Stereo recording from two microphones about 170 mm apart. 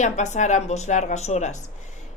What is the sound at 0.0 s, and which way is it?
A woman's voice, 45° left (ahead or behind).